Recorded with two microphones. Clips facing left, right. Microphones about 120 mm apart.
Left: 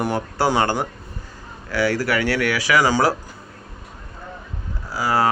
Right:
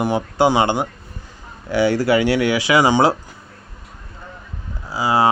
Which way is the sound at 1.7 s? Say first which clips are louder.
Right 5 dB; 25° right (ahead or behind).